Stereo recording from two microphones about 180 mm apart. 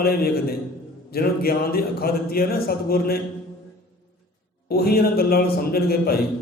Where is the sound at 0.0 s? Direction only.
60° left (ahead or behind).